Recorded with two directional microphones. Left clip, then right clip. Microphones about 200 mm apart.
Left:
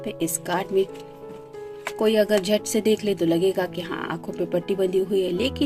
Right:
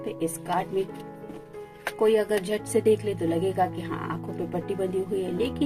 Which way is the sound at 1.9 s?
45° left (ahead or behind).